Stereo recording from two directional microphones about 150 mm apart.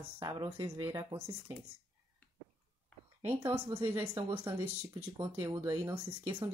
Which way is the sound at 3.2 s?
15° right (ahead or behind).